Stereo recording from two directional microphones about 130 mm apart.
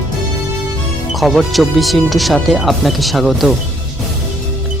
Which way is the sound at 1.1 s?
Centre (ahead or behind).